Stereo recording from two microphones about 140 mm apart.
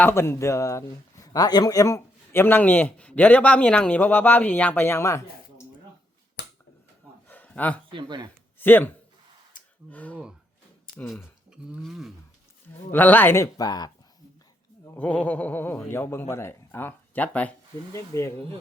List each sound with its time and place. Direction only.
0.0 s a man's voice: 20° left (ahead or behind)
7.3 s a sound: 10° left (ahead or behind)
7.9 s speech: 35° right (ahead or behind)
8.5 s speech: 15° left (ahead or behind)
9.5 s a sound: 70° left (ahead or behind)
9.9 s a man's voice: 10° left (ahead or behind)
11.1 s speech: 5° right (ahead or behind)
12.9 s speech: 15° left (ahead or behind); by 13.9 s 30° left (ahead or behind)
14.9 s a man's voice: 10° left (ahead or behind)